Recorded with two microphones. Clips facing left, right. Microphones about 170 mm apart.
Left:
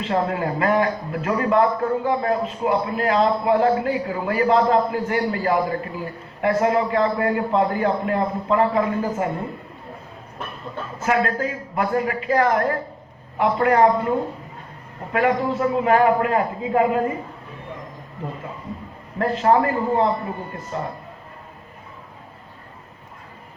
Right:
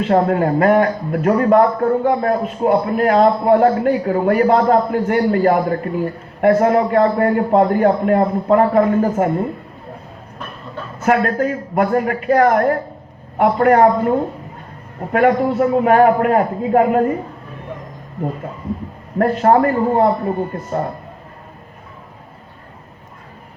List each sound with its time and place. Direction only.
0.0 s a man's voice: 50° right (ahead or behind)
11.0 s a man's voice: 55° right (ahead or behind)
19.2 s a man's voice: 50° right (ahead or behind)